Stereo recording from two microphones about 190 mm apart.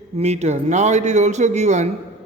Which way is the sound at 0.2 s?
35° right (ahead or behind).